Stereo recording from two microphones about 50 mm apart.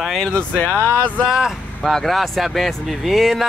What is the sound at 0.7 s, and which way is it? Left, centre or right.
Speech, right.